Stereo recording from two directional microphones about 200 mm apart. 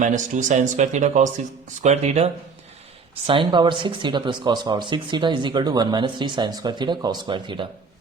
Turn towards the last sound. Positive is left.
turn(degrees=-25)  # may be behind; listen again after turning